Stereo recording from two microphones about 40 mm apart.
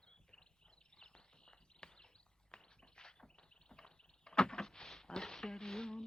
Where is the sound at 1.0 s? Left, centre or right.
Left.